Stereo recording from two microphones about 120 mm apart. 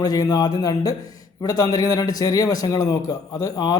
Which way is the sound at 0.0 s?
30° left (ahead or behind).